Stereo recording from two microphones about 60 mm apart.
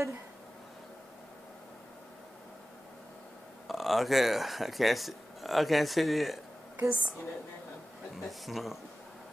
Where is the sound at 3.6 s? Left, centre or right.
Centre.